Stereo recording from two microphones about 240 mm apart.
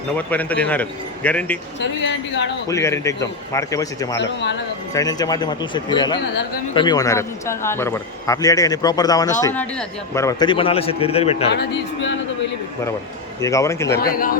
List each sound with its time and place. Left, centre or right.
0.2 s a man's voice: centre
1.8 s speech: left
2.6 s a man's voice: centre
4.2 s speech: left
4.9 s a man's voice: centre
11.4 s speech: left
13.4 s a man's voice: centre
14.0 s speech: left